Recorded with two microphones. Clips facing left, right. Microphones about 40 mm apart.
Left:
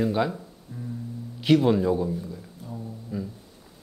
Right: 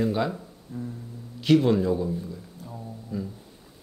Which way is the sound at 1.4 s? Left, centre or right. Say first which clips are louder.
Even; centre.